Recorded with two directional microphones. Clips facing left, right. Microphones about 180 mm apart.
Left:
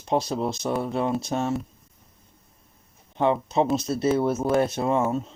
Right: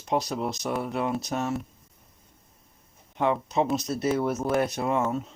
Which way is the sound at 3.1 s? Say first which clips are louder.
Left 3 dB; 25° left (ahead or behind).